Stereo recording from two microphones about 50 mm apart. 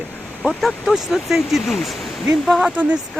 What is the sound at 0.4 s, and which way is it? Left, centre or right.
Speech, centre.